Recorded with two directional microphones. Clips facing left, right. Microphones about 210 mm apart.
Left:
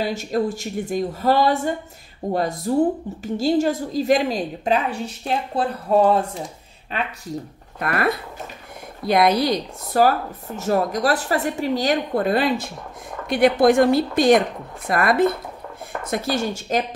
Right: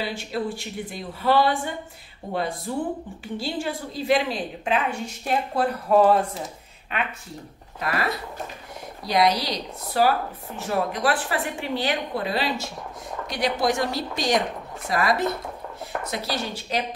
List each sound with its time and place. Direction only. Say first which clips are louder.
0.0 s speech: left 6 dB; 45° left (ahead or behind); by 6.1 s 30° left (ahead or behind)
7.8 s speech: left 5 dB; 55° left (ahead or behind)